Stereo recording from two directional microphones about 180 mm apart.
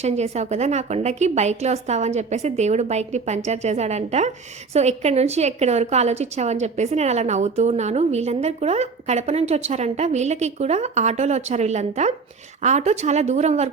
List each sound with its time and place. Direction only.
0.0 s a woman's voice: 35° right (ahead or behind)